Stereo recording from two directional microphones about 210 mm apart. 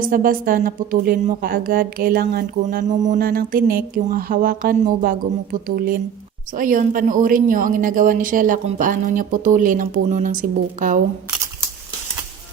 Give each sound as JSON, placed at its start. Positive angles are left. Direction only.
{"t": 0.0, "sound": "a woman's voice", "side_deg": -40}